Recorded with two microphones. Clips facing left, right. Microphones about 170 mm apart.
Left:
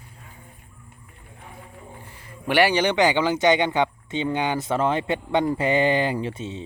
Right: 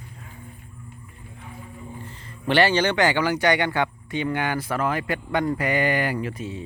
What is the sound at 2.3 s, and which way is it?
Speech, 10° left (ahead or behind).